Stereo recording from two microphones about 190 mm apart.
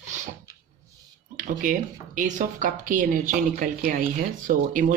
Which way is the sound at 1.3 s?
45° right (ahead or behind).